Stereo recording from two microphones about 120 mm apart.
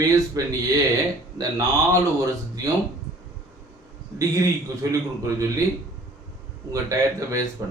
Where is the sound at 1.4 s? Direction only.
30° right (ahead or behind).